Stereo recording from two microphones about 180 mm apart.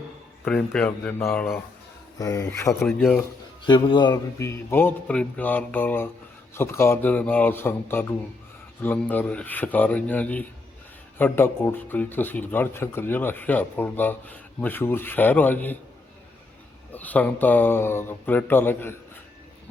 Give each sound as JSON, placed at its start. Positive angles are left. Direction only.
{"t": 0.4, "sound": "speech", "side_deg": 5}
{"t": 3.7, "sound": "speech", "side_deg": 25}
{"t": 16.9, "sound": "speech", "side_deg": 10}